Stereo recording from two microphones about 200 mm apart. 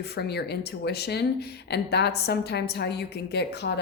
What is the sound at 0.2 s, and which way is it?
A woman's voice, 55° left (ahead or behind).